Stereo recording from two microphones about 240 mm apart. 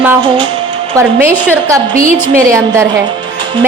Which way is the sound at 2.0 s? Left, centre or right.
Right.